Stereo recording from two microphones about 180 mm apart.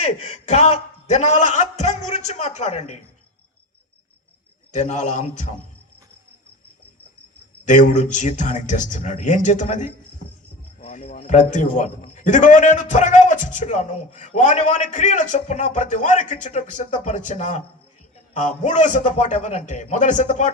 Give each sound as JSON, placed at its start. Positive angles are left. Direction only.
{"t": 0.0, "sound": "a man's voice", "side_deg": 35}
{"t": 4.7, "sound": "a man's voice", "side_deg": 40}
{"t": 7.6, "sound": "a man's voice", "side_deg": 45}